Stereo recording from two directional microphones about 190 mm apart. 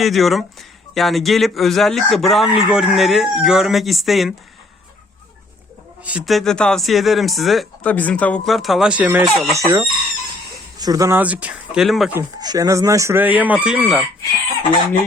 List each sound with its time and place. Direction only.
0.0 s speech: centre (ahead or behind)
6.1 s speech: 5° right (ahead or behind)
12.1 s speech: 20° right (ahead or behind)